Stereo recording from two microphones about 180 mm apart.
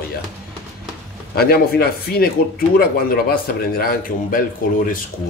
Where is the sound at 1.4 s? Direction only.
60° left (ahead or behind).